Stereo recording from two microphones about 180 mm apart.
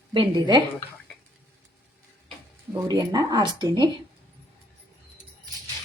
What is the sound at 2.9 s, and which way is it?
Speech, 20° right (ahead or behind).